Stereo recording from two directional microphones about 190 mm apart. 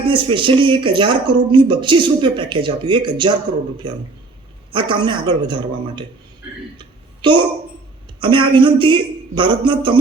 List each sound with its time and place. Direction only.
0.1 s speech: 25° right (ahead or behind)
6.7 s a sound: 25° right (ahead or behind)
8.2 s speech: 25° right (ahead or behind)